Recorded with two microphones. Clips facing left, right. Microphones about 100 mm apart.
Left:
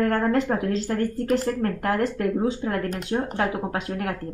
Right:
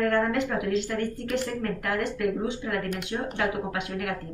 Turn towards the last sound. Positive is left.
turn(degrees=40)  # may be behind; listen again after turning